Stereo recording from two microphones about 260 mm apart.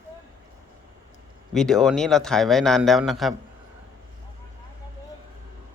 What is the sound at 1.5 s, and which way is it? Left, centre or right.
A man's voice, centre.